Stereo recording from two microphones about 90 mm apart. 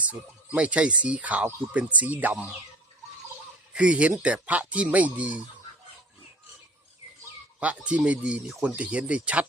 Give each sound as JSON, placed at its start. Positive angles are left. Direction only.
{"t": 0.0, "sound": "speech", "side_deg": -15}
{"t": 3.8, "sound": "speech", "side_deg": -15}
{"t": 7.6, "sound": "speech", "side_deg": -15}